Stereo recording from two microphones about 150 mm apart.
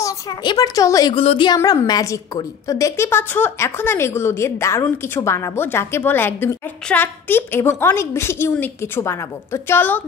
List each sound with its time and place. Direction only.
0.0 s a woman's voice: 25° left (ahead or behind)
1.1 s speech: 35° left (ahead or behind)
1.6 s a woman's voice: 20° left (ahead or behind)